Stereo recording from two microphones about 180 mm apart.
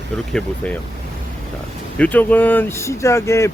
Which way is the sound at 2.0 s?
10° left (ahead or behind).